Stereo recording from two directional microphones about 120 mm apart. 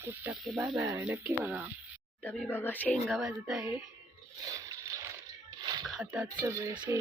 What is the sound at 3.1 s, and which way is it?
Speech, centre (ahead or behind).